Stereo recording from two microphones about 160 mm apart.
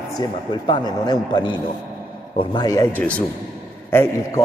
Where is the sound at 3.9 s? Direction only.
15° left (ahead or behind).